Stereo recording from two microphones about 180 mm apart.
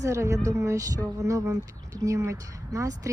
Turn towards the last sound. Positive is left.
turn(degrees=-20)  # may be behind; listen again after turning